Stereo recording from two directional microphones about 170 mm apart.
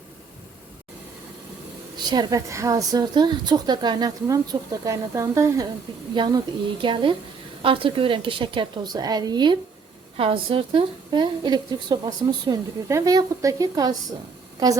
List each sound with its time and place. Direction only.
2.0 s a woman's voice: 25° right (ahead or behind)